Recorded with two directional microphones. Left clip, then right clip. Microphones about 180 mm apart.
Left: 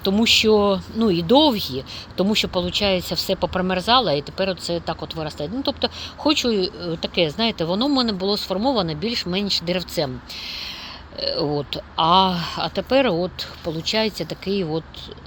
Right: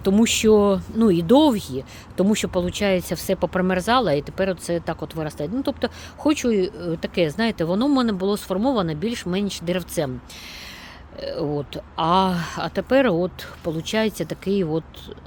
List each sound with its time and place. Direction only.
0.0 s speech: 45° right (ahead or behind)
6.5 s speech: 90° right
6.7 s speech: 40° right (ahead or behind)
11.2 s speech: 15° right (ahead or behind)
11.9 s speech: 30° right (ahead or behind)